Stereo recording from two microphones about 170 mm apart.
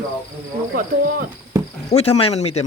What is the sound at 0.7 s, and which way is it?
Speech, 55° right (ahead or behind).